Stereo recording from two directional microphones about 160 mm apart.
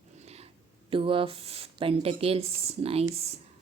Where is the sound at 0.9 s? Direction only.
35° right (ahead or behind).